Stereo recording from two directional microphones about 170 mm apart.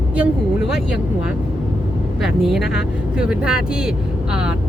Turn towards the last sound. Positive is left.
turn(degrees=-5)  # may be behind; listen again after turning